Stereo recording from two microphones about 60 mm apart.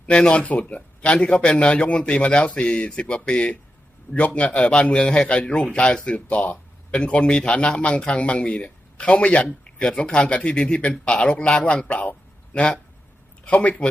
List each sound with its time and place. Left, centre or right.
0.0 s a man's voice: centre
13.4 s speech: left